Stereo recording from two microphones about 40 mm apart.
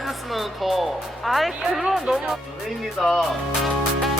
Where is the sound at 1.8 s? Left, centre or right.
Centre.